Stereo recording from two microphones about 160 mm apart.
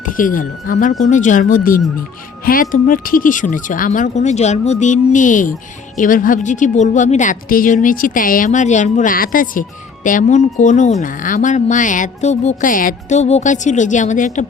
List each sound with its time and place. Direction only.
0.0 s a woman's voice: 55° left (ahead or behind)